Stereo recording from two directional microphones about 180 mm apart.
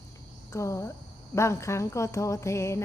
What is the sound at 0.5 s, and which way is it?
Speech, 15° left (ahead or behind).